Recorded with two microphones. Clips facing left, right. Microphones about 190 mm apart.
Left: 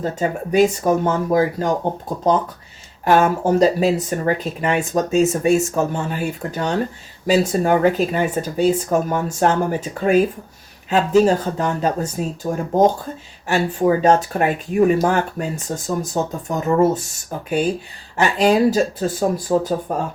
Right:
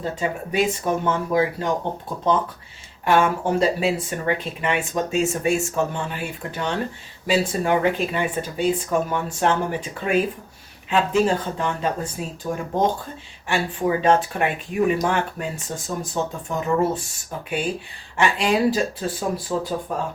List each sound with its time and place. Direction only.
0.0 s speech: 40° left (ahead or behind)
18.2 s speech: 40° left (ahead or behind)